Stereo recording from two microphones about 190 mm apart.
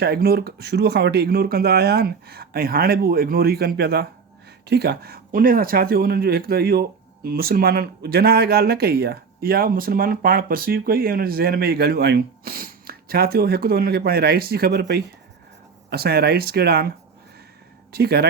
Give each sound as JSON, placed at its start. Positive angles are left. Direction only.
{"t": 0.0, "sound": "speech", "side_deg": -55}
{"t": 17.9, "sound": "speech", "side_deg": -55}